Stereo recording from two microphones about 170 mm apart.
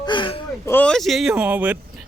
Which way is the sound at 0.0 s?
30° left (ahead or behind).